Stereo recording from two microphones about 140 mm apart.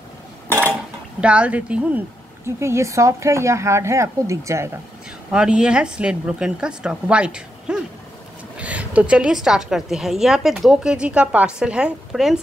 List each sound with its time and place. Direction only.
1.2 s speech: 10° right (ahead or behind)
2.4 s speech: 20° right (ahead or behind)
5.3 s a woman's voice: 5° right (ahead or behind)